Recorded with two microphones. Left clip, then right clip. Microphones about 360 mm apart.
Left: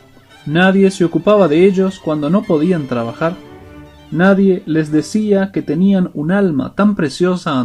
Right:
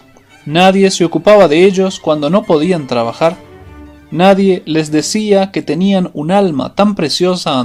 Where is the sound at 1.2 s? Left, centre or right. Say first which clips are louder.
Right 6 dB; right.